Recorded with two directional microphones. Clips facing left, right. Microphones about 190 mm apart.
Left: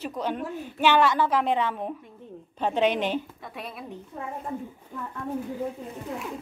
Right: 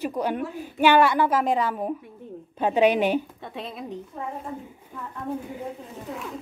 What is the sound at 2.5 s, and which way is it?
Speech, 10° right (ahead or behind).